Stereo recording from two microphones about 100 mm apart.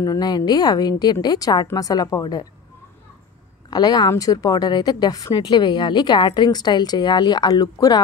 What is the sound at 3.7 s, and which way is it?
A woman's voice, 40° left (ahead or behind).